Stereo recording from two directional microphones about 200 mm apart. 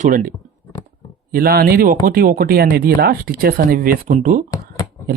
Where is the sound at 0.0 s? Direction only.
40° right (ahead or behind).